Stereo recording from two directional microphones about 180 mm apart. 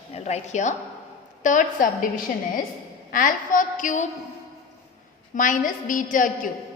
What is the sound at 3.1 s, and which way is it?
Speech, 45° left (ahead or behind).